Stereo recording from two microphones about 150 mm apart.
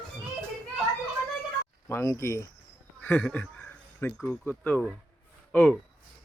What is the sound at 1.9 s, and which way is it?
Speech, 20° left (ahead or behind).